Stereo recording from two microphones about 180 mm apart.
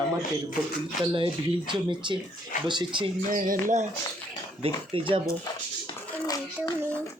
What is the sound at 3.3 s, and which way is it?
Speech, 50° right (ahead or behind).